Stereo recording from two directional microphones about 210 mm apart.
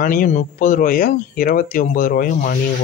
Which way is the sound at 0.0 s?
40° left (ahead or behind).